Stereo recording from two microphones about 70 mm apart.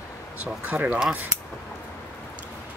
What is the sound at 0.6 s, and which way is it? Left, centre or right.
Speech, centre.